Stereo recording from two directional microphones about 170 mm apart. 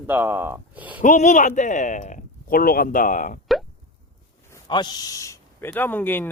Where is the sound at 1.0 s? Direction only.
45° left (ahead or behind).